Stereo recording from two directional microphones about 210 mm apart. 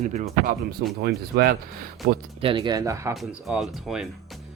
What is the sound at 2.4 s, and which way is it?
Speech, 20° right (ahead or behind).